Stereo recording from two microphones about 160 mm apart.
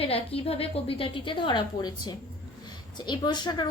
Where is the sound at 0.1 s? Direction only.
35° left (ahead or behind).